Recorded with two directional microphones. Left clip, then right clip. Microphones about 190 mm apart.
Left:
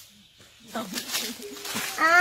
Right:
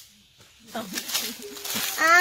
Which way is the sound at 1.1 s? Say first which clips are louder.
Right 2 dB; 20° right (ahead or behind).